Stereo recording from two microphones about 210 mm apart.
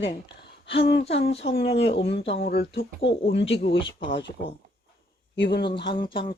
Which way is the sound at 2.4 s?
45° left (ahead or behind).